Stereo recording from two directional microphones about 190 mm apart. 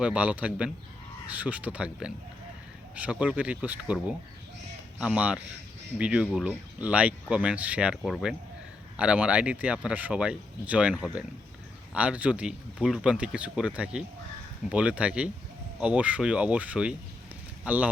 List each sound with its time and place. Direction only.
0.0 s speech: 5° right (ahead or behind)